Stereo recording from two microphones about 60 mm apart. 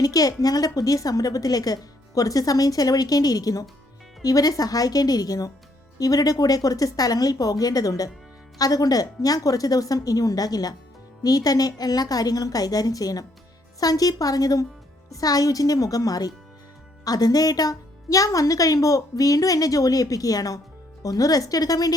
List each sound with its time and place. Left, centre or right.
0.0 s a woman's voice: left